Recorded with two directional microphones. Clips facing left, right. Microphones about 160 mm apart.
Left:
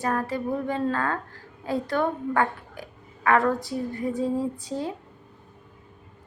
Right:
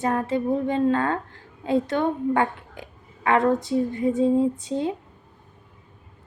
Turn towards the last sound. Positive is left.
turn(degrees=-20)  # may be behind; listen again after turning